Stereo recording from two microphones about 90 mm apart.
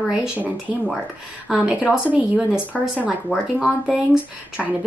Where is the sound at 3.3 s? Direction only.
Centre (ahead or behind).